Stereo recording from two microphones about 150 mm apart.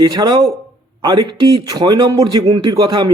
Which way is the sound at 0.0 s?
30° right (ahead or behind).